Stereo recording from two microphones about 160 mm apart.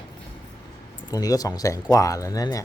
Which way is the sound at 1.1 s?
25° left (ahead or behind).